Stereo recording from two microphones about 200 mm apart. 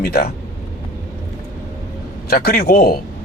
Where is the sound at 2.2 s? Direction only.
50° left (ahead or behind).